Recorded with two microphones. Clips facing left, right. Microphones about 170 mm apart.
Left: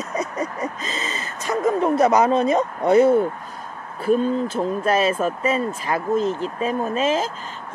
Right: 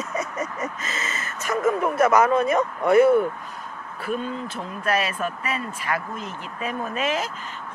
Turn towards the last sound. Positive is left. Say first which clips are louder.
# left 5 dB
turn(degrees=30)  # may be behind; listen again after turning